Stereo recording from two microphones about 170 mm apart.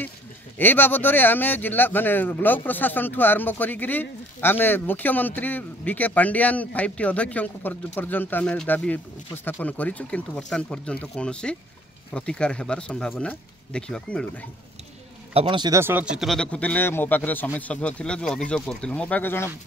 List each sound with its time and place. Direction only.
0.6 s speech: 10° left (ahead or behind)
15.3 s speech: 25° right (ahead or behind)
15.8 s speech: 10° right (ahead or behind); by 19.5 s 15° left (ahead or behind)